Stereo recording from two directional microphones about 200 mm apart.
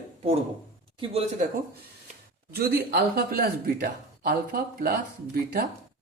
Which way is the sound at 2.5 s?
50° right (ahead or behind).